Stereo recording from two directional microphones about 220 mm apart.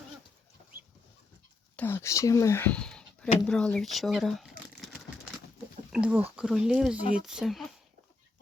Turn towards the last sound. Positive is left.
turn(degrees=0)  # may be behind; listen again after turning